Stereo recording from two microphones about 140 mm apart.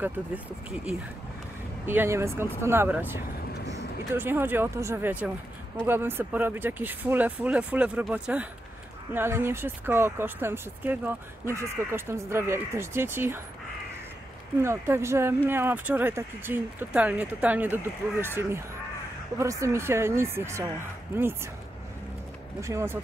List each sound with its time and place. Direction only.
0.0 s speech: 10° right (ahead or behind)
14.6 s speech: 20° right (ahead or behind)
22.6 s speech: 20° right (ahead or behind)